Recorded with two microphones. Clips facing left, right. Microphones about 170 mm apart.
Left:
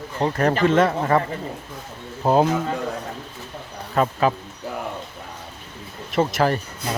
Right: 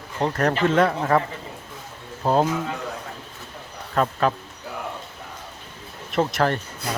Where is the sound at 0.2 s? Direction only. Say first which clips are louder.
Left 2 dB; 5° left (ahead or behind).